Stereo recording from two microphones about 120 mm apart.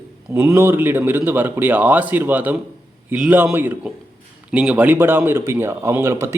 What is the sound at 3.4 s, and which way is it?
Speech, 15° right (ahead or behind).